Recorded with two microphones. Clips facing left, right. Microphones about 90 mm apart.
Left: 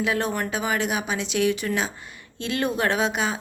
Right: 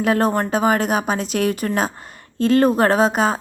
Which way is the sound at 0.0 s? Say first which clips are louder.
Right 7 dB; 45° right (ahead or behind).